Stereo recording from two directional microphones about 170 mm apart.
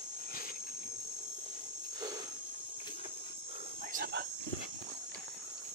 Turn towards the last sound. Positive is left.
turn(degrees=-65)  # may be behind; listen again after turning